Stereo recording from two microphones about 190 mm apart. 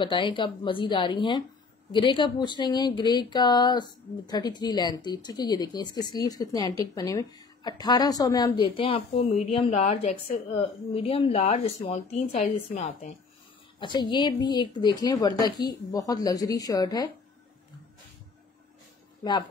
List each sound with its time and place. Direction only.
0.0 s a woman's voice: 25° left (ahead or behind)
13.7 s a woman's voice: 25° left (ahead or behind)